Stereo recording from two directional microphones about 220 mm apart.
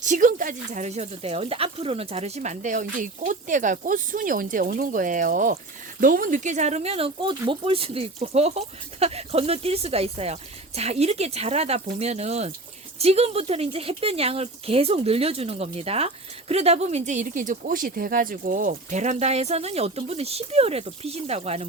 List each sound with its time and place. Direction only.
0.0 s speech: 35° right (ahead or behind)